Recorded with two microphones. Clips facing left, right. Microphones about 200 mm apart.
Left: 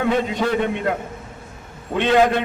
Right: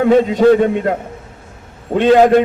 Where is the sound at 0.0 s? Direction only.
40° right (ahead or behind).